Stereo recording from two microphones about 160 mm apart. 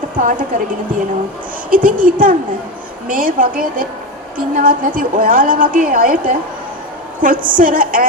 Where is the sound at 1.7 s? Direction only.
60° right (ahead or behind).